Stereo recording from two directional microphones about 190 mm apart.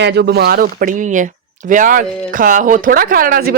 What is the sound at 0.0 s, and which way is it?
Speech, 60° right (ahead or behind).